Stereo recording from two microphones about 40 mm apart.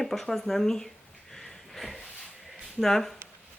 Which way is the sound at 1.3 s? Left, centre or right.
Centre.